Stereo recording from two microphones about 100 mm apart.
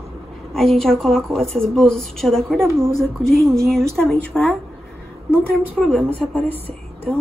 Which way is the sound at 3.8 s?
25° right (ahead or behind).